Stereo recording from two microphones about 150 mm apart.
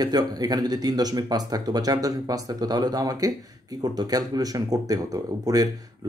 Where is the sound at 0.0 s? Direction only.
25° right (ahead or behind).